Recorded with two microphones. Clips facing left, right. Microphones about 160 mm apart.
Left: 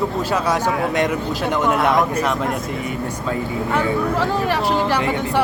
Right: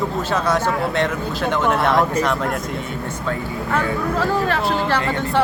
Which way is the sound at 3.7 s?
20° left (ahead or behind).